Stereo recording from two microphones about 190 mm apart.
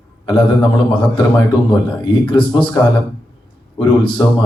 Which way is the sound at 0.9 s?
25° left (ahead or behind).